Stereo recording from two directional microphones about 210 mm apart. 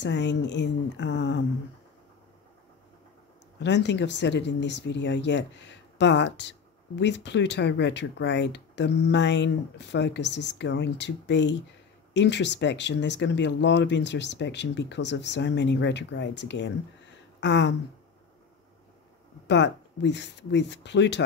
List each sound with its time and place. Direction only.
0.0 s speech: 55° left (ahead or behind)
3.5 s speech: 55° left (ahead or behind)
19.4 s speech: 55° left (ahead or behind)